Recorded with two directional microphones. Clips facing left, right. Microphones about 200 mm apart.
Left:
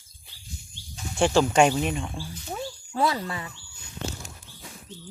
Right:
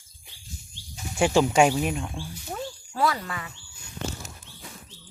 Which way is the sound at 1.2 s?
15° right (ahead or behind).